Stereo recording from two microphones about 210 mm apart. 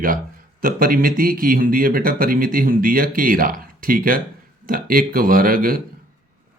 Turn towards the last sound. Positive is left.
turn(degrees=-45)  # may be behind; listen again after turning